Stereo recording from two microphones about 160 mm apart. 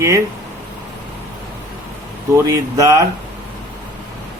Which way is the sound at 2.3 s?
20° right (ahead or behind).